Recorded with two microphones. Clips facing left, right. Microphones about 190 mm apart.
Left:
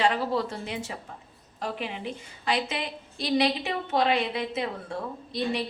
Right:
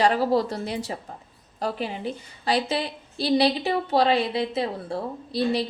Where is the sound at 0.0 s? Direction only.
40° right (ahead or behind).